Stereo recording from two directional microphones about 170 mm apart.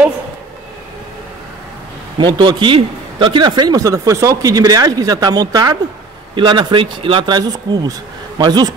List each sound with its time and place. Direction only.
2.1 s a man's voice: 25° right (ahead or behind)